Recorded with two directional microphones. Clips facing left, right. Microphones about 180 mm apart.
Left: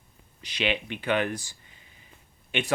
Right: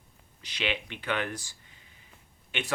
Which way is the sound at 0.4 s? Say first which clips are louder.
Left 4 dB; 15° left (ahead or behind).